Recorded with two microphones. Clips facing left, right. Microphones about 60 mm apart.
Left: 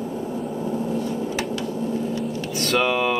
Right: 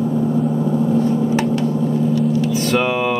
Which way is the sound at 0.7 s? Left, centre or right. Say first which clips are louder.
Right 9 dB; right.